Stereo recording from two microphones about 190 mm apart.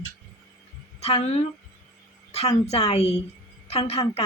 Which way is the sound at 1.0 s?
35° left (ahead or behind).